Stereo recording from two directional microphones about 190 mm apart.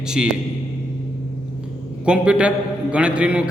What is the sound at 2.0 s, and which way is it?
A man's voice, 5° right (ahead or behind).